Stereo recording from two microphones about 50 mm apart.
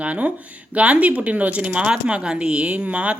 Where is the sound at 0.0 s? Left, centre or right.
Right.